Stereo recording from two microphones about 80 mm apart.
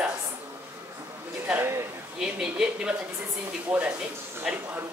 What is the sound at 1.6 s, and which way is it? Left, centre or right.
Speech, right.